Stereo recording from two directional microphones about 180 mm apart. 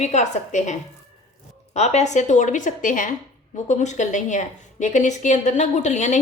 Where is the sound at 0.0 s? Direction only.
40° left (ahead or behind).